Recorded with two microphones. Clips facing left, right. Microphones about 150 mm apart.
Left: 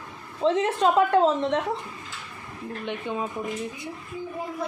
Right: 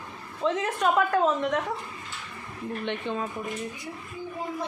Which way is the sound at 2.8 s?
10° left (ahead or behind).